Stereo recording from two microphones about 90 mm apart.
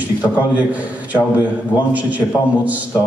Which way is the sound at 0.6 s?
15° right (ahead or behind).